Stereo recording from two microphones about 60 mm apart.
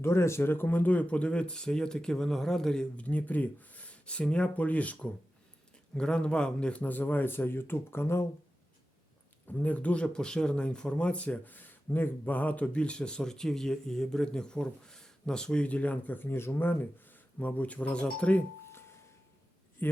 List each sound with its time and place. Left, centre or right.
0.0 s speech: left; by 2.8 s centre
3.0 s a man's voice: left
9.5 s speech: left
19.8 s a man's voice: left